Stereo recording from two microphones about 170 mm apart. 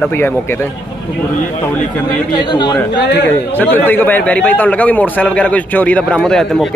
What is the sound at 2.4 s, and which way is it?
Speech, 25° left (ahead or behind).